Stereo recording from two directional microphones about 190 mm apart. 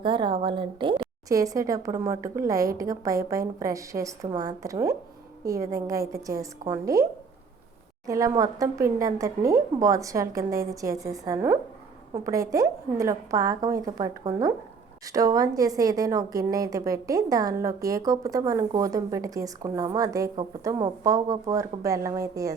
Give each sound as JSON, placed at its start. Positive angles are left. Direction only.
{"t": 0.0, "sound": "a woman's voice", "side_deg": -25}
{"t": 8.0, "sound": "a woman's voice", "side_deg": -15}